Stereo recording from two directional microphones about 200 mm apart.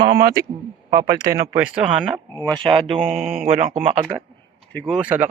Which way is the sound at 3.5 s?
30° right (ahead or behind).